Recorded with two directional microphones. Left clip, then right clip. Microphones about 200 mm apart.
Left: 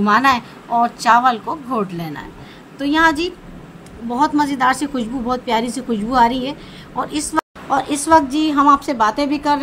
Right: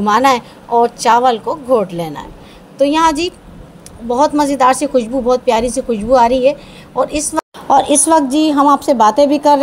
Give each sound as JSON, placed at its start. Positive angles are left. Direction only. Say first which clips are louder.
{"t": 0.0, "sound": "a woman's voice", "louder": "right 3 dB", "side_deg": -20}